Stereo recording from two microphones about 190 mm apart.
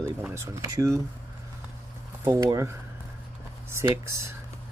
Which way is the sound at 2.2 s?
15° right (ahead or behind).